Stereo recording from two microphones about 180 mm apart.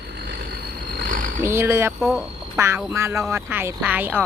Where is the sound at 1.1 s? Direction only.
50° right (ahead or behind).